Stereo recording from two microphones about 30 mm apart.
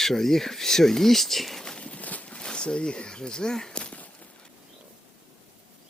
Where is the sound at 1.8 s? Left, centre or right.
Left.